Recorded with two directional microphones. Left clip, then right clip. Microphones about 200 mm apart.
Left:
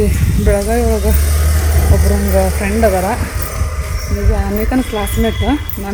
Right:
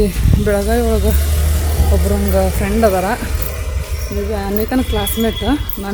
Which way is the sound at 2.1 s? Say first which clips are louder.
Left 1 dB; 15° right (ahead or behind).